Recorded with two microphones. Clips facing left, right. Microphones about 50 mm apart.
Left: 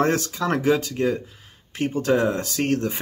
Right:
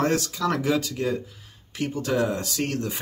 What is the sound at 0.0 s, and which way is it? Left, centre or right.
Speech, left.